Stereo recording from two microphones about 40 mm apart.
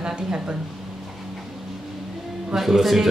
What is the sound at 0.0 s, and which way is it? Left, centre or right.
Speech, centre.